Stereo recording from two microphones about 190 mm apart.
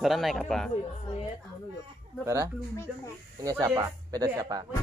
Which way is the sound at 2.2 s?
15° right (ahead or behind).